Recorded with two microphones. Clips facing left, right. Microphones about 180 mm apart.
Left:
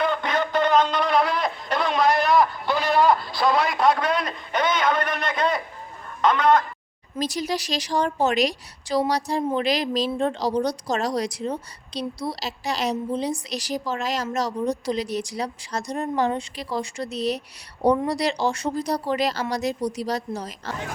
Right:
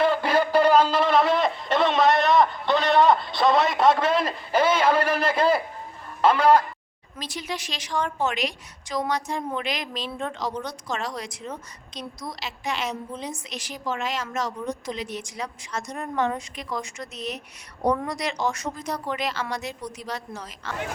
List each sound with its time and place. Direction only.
0.3 s a sound: 10° right (ahead or behind)
4.9 s speech: 30° right (ahead or behind)
5.3 s a man's voice: 5° right (ahead or behind)
6.3 s chicken: 30° right (ahead or behind)
7.2 s speech: 40° left (ahead or behind)